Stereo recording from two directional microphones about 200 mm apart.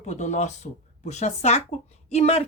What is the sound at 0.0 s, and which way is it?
Speech, 35° left (ahead or behind).